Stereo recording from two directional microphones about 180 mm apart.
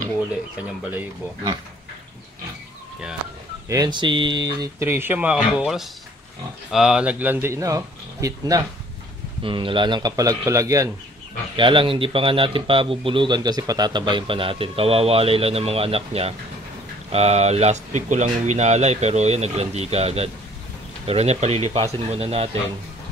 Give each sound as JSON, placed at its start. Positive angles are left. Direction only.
{"t": 0.7, "sound": "speech", "side_deg": -10}
{"t": 3.6, "sound": "a man's voice", "side_deg": -20}
{"t": 11.5, "sound": "a man's voice", "side_deg": -30}